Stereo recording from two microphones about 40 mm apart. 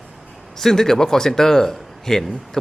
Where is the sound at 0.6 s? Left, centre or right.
Centre.